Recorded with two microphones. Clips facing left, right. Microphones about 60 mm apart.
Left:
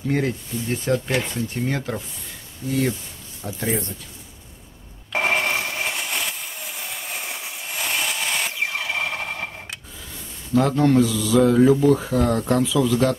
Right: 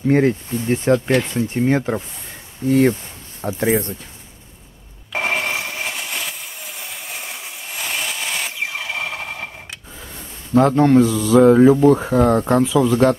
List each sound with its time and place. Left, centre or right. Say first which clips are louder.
0.1 s speech: right 7 dB; right
2.7 s speech: right 8 dB; right
5.1 s wood: even; centre
10.7 s speech: right 4 dB; right